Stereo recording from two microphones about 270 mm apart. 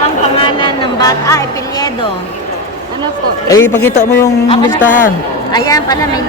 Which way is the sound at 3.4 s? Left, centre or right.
Centre.